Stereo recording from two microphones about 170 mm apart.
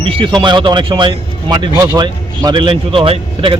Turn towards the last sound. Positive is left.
turn(degrees=-30)  # may be behind; listen again after turning